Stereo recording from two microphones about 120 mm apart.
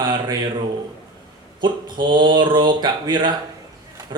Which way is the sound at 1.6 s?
40° right (ahead or behind).